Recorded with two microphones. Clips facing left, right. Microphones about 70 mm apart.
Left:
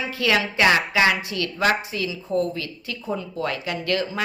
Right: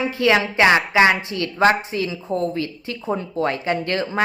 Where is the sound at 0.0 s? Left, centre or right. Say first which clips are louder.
Right 4 dB; right.